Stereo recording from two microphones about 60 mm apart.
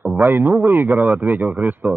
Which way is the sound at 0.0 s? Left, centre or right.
Right.